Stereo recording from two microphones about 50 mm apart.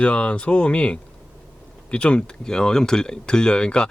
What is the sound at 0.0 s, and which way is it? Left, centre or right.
Speech, left.